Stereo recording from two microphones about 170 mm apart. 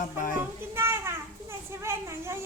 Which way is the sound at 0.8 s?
15° right (ahead or behind).